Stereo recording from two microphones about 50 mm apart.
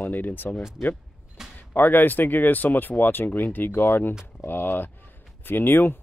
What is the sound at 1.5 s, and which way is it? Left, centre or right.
Speech, left.